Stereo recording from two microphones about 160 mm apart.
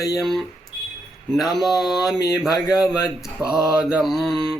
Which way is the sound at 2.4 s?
25° left (ahead or behind).